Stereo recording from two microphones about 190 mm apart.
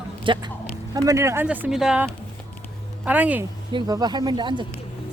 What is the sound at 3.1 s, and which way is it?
Speech, 10° right (ahead or behind).